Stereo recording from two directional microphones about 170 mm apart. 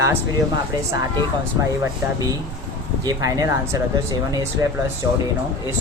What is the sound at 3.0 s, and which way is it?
Speech, 20° right (ahead or behind).